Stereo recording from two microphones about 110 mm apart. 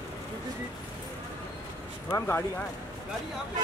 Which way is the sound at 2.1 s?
25° left (ahead or behind).